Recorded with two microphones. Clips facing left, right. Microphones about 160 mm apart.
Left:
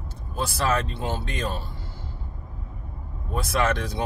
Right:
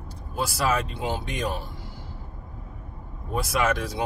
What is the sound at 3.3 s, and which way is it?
Speech, 10° right (ahead or behind).